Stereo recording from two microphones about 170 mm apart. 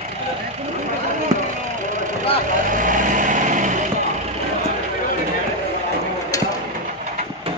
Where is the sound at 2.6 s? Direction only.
50° right (ahead or behind).